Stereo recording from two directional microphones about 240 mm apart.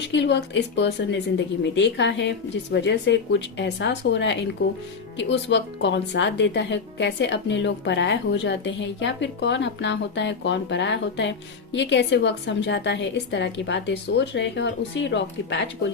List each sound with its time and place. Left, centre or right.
0.1 s speech: left